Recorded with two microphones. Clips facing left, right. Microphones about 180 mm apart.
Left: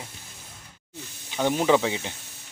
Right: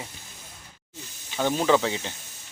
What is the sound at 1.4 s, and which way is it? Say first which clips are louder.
Speech: left 1 dB; 15° left (ahead or behind).